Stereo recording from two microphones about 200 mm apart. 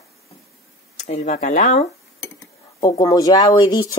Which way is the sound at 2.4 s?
15° left (ahead or behind).